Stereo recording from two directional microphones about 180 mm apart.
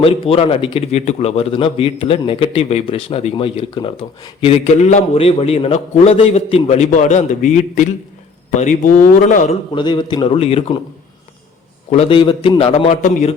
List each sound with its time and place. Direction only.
0.0 s a man's voice: 30° left (ahead or behind)
9.7 s a man's voice: 25° left (ahead or behind)
11.9 s a man's voice: 35° left (ahead or behind)